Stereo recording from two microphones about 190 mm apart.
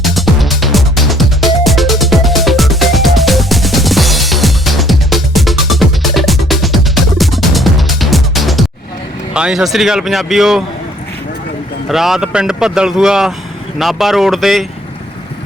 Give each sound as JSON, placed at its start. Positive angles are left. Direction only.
{"t": 0.0, "sound": "music", "side_deg": 0}
{"t": 9.3, "sound": "speech", "side_deg": -5}
{"t": 11.9, "sound": "speech", "side_deg": 0}